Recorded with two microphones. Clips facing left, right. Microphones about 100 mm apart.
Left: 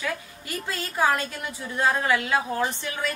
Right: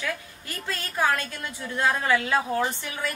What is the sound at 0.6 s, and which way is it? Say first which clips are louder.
A woman's voice: left 1 dB; 20° left (ahead or behind).